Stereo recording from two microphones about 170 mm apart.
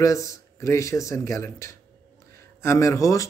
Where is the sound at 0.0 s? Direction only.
20° left (ahead or behind).